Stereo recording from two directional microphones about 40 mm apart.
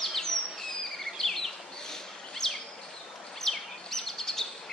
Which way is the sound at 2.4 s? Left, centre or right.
Centre.